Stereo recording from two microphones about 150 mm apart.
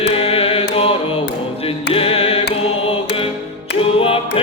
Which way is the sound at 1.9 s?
40° left (ahead or behind).